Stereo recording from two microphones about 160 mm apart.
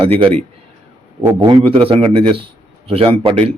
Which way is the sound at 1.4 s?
30° right (ahead or behind).